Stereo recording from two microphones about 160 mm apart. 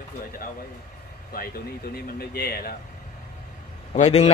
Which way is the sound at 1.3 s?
70° left (ahead or behind).